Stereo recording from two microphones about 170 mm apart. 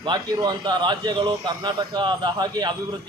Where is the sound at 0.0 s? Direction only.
25° right (ahead or behind).